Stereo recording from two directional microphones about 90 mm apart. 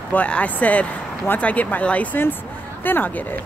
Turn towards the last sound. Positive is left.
turn(degrees=20)  # may be behind; listen again after turning